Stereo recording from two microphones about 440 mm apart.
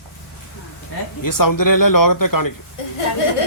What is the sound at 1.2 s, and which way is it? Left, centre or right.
Speech, left.